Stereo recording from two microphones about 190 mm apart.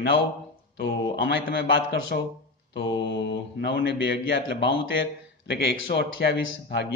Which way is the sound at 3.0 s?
65° left (ahead or behind).